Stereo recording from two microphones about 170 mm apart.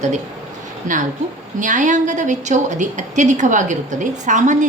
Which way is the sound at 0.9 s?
50° right (ahead or behind).